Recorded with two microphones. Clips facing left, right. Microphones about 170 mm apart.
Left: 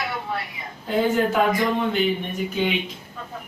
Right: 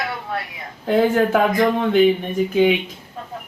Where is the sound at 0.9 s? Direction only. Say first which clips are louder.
Right 4 dB; 65° right (ahead or behind).